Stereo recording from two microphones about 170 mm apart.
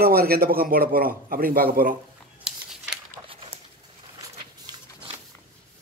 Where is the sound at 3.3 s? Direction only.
30° right (ahead or behind).